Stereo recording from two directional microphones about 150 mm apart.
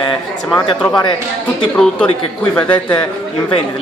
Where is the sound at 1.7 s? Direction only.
10° left (ahead or behind).